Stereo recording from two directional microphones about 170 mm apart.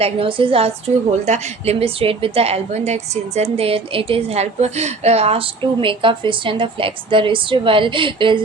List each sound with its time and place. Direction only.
0.0 s a woman's voice: 30° right (ahead or behind)